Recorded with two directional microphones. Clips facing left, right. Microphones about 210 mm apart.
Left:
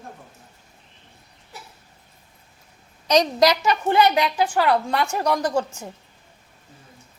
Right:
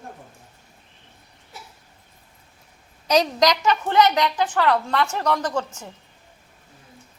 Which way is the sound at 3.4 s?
10° left (ahead or behind).